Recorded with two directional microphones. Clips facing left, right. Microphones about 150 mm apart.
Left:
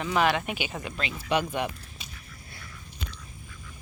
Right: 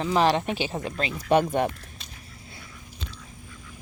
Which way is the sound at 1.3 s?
45° right (ahead or behind).